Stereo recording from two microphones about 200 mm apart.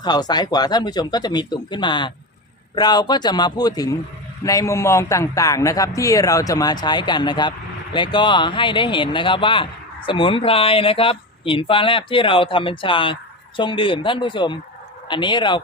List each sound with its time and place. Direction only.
0.0 s a man's voice: 20° left (ahead or behind)